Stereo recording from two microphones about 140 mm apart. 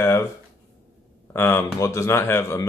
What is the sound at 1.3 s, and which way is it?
Speech, 15° left (ahead or behind).